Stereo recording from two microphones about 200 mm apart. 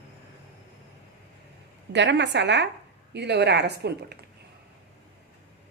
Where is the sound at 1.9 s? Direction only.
60° right (ahead or behind).